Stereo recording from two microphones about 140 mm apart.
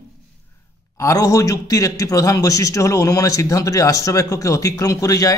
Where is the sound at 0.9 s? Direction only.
25° left (ahead or behind).